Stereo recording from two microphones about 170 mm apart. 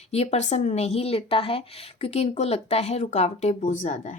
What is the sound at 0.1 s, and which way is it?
A woman's voice, 40° left (ahead or behind).